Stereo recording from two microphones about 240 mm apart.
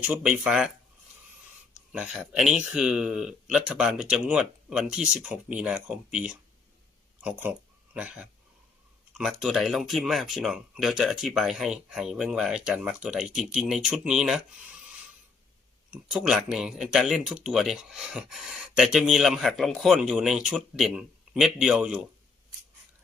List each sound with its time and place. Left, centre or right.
0.1 s speech: centre
1.9 s speech: centre
15.9 s speech: centre